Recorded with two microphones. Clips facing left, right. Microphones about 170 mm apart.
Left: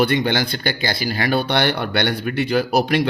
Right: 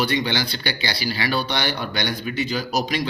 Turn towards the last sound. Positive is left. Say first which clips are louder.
# left 6 dB
turn(degrees=60)  # may be behind; listen again after turning